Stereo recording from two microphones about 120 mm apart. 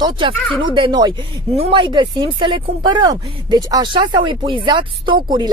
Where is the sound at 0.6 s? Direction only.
45° right (ahead or behind).